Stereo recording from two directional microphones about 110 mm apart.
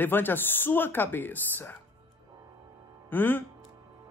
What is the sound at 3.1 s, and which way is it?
Speech, 15° left (ahead or behind).